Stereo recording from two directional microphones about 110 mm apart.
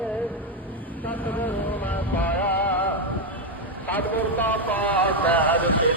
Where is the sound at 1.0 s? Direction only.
15° left (ahead or behind).